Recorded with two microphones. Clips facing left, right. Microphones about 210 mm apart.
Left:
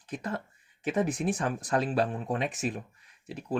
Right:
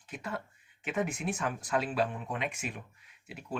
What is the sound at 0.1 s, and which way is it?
Speech, 35° left (ahead or behind).